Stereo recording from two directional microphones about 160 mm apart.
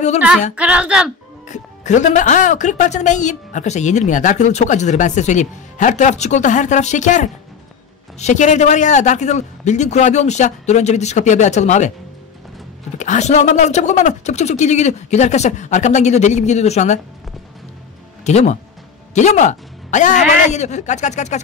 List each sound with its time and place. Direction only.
0.6 s speech: 5° right (ahead or behind)
1.5 s speech: 50° left (ahead or behind)
12.9 s speech: 50° left (ahead or behind)
18.2 s speech: 45° left (ahead or behind)